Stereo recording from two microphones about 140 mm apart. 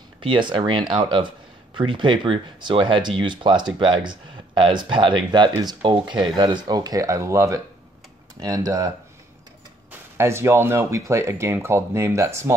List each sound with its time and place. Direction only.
0.2 s speech: 35° right (ahead or behind)
10.1 s speech: 20° right (ahead or behind)